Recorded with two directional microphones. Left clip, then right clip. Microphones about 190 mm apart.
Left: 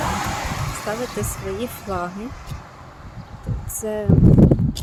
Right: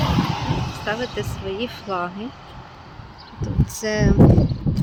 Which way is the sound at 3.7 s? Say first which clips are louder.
Right 3 dB; 5° right (ahead or behind).